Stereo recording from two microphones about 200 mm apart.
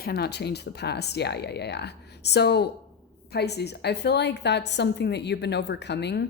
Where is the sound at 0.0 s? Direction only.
50° left (ahead or behind).